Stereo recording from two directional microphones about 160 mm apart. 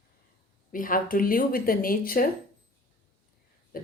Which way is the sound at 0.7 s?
60° left (ahead or behind).